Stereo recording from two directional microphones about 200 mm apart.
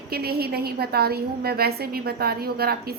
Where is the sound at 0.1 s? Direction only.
50° right (ahead or behind).